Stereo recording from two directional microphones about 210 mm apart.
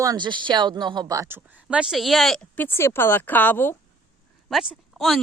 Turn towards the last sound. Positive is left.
turn(degrees=0)  # may be behind; listen again after turning